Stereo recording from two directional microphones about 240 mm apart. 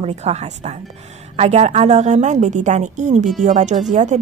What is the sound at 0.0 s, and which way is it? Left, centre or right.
Speech, right.